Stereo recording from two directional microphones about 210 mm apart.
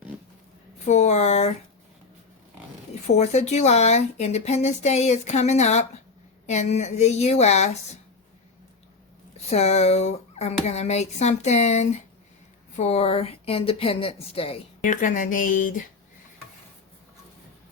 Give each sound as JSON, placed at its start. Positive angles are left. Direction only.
{"t": 0.9, "sound": "speech", "side_deg": 35}
{"t": 3.1, "sound": "speech", "side_deg": 30}
{"t": 9.5, "sound": "a woman's voice", "side_deg": 30}
{"t": 14.8, "sound": "speech", "side_deg": 40}